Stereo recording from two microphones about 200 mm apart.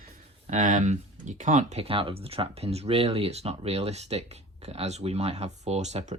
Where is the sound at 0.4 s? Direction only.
40° right (ahead or behind).